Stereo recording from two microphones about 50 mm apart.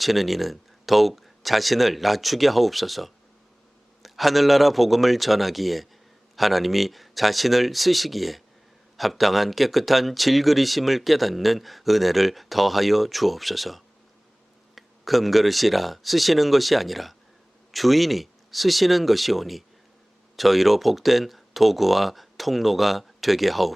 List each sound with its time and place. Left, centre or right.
0.0 s speech: centre